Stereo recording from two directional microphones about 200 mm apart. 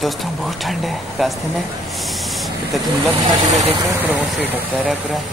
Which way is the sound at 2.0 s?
Centre (ahead or behind).